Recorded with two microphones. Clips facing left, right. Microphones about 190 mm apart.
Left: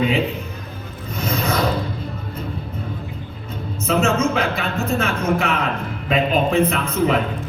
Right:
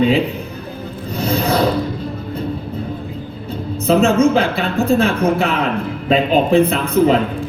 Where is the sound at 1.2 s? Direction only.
35° right (ahead or behind).